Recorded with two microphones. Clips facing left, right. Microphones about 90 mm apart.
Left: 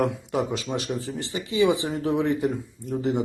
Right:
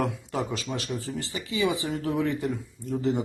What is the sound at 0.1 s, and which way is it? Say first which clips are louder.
Speech: left 4 dB; 20° left (ahead or behind).